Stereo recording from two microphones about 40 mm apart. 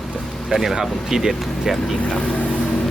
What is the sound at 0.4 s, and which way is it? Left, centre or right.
Speech, centre.